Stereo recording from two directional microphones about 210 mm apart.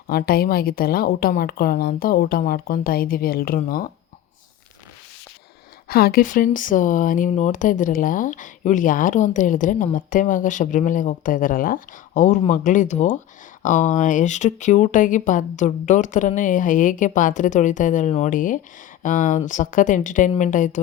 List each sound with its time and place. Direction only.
0.1 s a woman's voice: 45° left (ahead or behind)
5.9 s speech: 45° left (ahead or behind)